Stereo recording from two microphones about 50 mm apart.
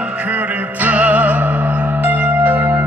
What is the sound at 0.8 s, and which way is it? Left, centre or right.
Music, right.